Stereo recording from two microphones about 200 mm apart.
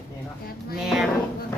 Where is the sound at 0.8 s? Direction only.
Centre (ahead or behind).